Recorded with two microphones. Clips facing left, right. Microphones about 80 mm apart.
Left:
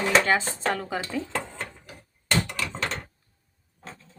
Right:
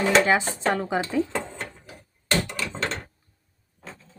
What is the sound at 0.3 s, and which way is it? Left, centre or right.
Speech, centre.